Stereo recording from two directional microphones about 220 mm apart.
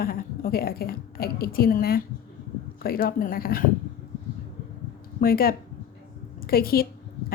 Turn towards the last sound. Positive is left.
turn(degrees=45)  # may be behind; listen again after turning